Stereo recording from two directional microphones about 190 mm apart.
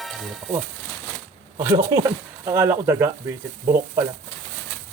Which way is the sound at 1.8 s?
15° right (ahead or behind).